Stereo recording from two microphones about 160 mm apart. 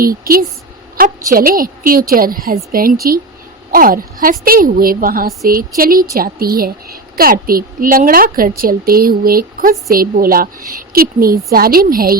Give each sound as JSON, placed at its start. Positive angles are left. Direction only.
{"t": 0.0, "sound": "a woman's voice", "side_deg": -65}